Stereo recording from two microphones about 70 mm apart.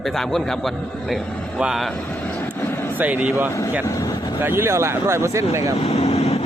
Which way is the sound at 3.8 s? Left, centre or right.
Left.